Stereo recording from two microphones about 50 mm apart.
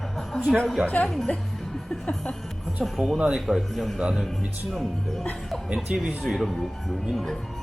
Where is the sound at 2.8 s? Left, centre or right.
Centre.